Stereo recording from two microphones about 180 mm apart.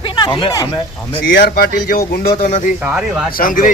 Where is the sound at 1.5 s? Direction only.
60° left (ahead or behind).